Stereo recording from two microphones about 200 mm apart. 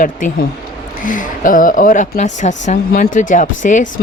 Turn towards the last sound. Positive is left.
turn(degrees=40)  # may be behind; listen again after turning